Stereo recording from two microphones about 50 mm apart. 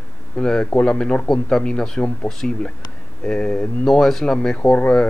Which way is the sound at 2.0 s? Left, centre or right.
Centre.